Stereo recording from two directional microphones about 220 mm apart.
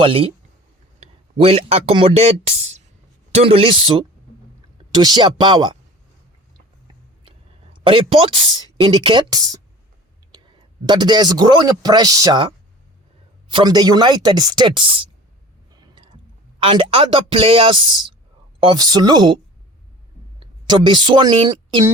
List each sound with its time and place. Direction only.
0.0 s speech: 25° right (ahead or behind)
7.3 s speech: 25° right (ahead or behind)
16.6 s speech: 25° right (ahead or behind)
20.4 s a woman's voice: 20° right (ahead or behind)